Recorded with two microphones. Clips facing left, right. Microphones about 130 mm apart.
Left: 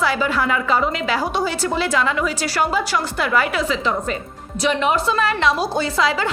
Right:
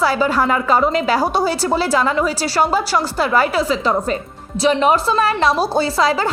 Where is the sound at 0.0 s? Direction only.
40° right (ahead or behind).